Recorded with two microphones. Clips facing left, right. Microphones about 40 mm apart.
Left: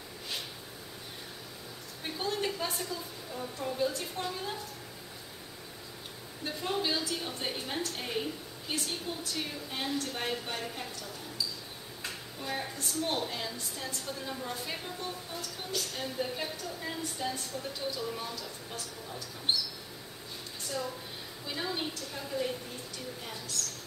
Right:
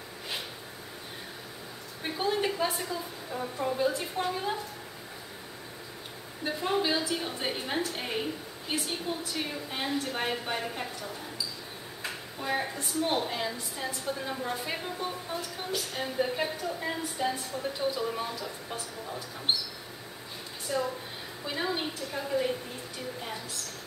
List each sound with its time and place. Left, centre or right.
2.0 s a woman's voice: centre
6.4 s a woman's voice: centre
20.6 s a woman's voice: centre